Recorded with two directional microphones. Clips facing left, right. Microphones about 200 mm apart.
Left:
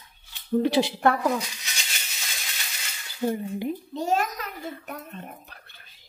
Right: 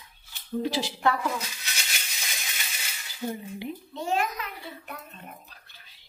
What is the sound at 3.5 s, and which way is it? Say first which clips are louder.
A child's voice: left 6 dB; 45° left (ahead or behind).